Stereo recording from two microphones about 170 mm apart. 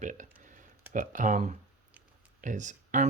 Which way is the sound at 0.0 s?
50° right (ahead or behind).